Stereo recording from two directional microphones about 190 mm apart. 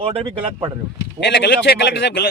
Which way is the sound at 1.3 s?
60° left (ahead or behind).